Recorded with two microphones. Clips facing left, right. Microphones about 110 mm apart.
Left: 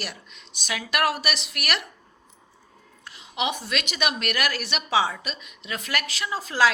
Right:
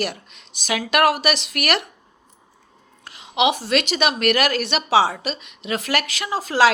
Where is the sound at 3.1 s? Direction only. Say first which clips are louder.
Right 8 dB; 80° right.